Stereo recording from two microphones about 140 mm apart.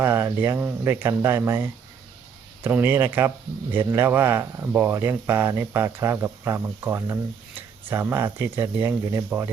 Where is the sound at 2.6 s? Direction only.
15° right (ahead or behind).